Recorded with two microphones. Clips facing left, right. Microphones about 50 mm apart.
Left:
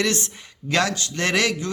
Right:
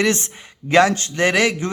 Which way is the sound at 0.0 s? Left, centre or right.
Right.